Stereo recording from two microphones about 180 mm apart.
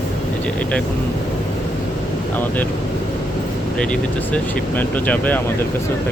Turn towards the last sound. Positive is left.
turn(degrees=10)  # may be behind; listen again after turning